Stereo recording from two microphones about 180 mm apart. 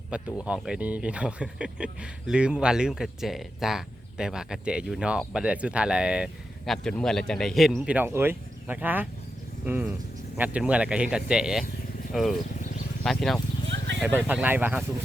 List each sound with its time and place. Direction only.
0.1 s speech: 5° right (ahead or behind)
13.7 s vehicle: 85° right
14.0 s speech: 10° right (ahead or behind)